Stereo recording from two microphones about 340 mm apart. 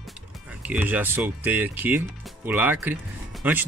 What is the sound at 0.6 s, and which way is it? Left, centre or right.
Speech, centre.